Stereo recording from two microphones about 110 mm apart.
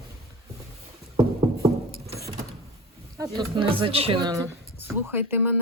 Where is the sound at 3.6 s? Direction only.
55° right (ahead or behind).